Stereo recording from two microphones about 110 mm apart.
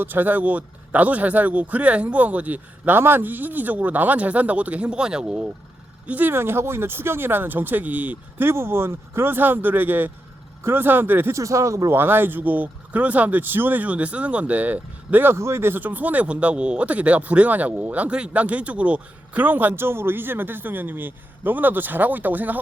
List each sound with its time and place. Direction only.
0.0 s speech: 15° right (ahead or behind)